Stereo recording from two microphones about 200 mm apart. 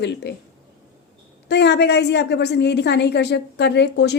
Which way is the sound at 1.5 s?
60° left (ahead or behind).